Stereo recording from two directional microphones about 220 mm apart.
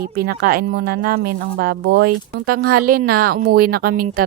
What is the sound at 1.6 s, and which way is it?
Speech, 45° right (ahead or behind).